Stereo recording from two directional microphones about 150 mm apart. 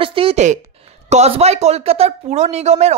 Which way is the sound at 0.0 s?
40° right (ahead or behind).